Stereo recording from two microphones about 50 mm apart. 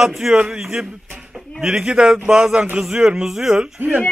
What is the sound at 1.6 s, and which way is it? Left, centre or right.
A man's voice, centre.